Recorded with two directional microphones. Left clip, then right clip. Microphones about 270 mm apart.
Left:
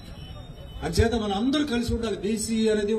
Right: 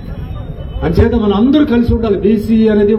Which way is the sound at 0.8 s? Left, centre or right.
Left.